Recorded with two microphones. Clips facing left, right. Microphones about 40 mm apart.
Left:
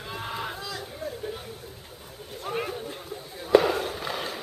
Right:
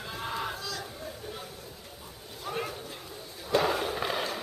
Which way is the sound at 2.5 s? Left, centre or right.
Left.